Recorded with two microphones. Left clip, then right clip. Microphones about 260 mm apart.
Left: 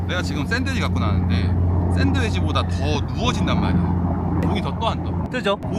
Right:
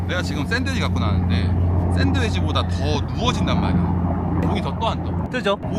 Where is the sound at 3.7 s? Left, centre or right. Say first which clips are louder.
Even; right.